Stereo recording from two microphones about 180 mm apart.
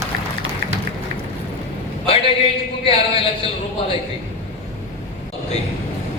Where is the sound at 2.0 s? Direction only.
30° left (ahead or behind).